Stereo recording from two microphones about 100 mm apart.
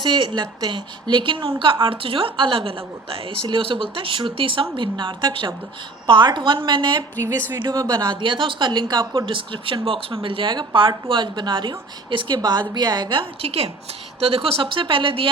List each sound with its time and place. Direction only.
0.0 s a woman's voice: 50° right (ahead or behind)
7.3 s speech: 35° right (ahead or behind); by 13.2 s 50° right (ahead or behind)
13.4 s a woman's voice: 85° right
14.2 s a woman's voice: 75° right (ahead or behind)